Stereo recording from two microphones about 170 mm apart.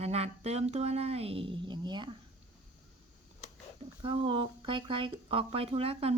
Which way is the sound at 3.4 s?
40° left (ahead or behind).